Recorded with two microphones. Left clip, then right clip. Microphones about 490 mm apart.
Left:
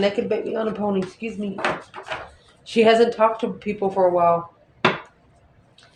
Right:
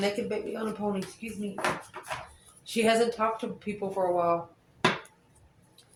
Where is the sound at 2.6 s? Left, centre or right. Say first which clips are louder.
Left 9 dB; right.